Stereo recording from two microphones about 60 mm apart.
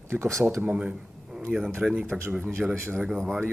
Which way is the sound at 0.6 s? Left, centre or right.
Right.